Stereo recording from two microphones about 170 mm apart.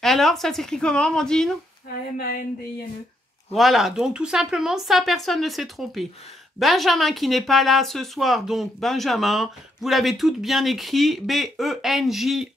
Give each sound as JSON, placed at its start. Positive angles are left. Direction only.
{"t": 0.0, "sound": "speech", "side_deg": 0}
{"t": 2.1, "sound": "a sound", "side_deg": 60}
{"t": 3.5, "sound": "speech", "side_deg": 0}